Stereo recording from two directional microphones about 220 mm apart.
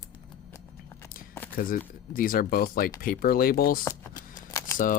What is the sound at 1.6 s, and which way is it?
Speech, 40° left (ahead or behind).